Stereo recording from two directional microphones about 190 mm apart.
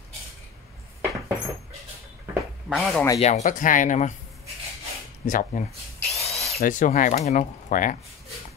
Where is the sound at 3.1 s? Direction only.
35° left (ahead or behind).